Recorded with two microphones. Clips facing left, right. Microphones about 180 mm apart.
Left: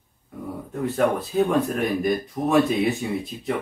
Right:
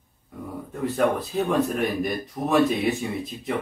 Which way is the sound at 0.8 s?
Centre (ahead or behind).